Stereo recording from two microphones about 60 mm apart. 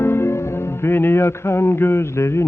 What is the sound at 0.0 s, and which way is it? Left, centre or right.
Music, left.